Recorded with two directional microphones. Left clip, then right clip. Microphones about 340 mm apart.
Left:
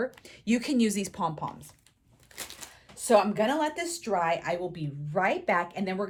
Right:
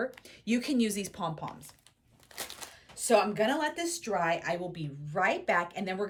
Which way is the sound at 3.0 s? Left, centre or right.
Centre.